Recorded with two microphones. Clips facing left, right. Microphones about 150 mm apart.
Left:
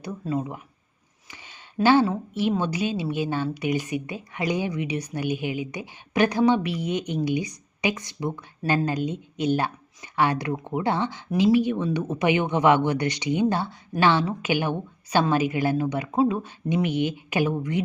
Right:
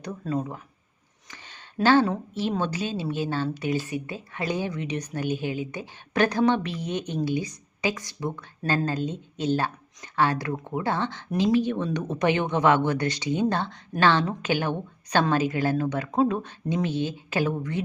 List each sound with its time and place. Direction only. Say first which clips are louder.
0.0 s a woman's voice: left 1 dB; 5° left (ahead or behind)